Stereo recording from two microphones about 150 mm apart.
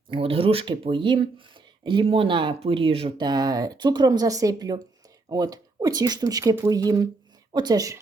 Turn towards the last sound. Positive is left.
turn(degrees=-25)  # may be behind; listen again after turning